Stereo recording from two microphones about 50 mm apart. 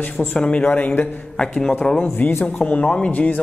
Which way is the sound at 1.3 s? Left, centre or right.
Centre.